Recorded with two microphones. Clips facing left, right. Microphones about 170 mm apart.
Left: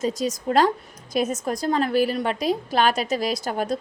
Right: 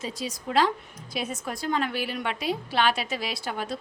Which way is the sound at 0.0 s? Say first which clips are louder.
Left 9 dB; 45° left (ahead or behind).